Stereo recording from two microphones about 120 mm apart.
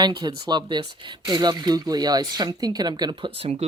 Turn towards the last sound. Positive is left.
turn(degrees=-60)  # may be behind; listen again after turning